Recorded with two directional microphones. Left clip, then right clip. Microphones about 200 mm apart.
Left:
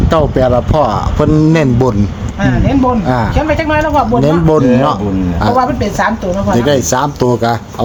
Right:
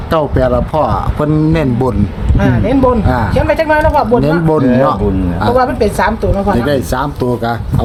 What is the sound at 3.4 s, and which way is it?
Speech, 45° right (ahead or behind).